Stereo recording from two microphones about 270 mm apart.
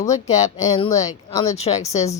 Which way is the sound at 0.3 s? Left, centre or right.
Left.